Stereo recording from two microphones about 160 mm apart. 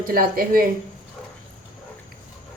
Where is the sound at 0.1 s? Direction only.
65° right (ahead or behind).